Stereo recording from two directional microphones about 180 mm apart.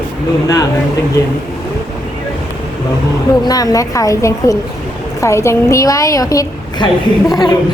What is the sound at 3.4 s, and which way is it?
A woman's voice, 20° left (ahead or behind).